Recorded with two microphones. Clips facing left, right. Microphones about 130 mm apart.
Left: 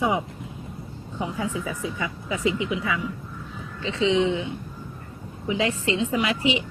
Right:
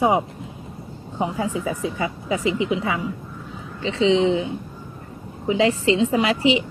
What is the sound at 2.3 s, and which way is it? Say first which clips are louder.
Speech: right 3 dB; 25° right (ahead or behind).